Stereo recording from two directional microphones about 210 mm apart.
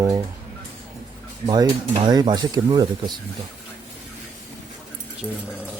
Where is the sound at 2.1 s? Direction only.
20° right (ahead or behind).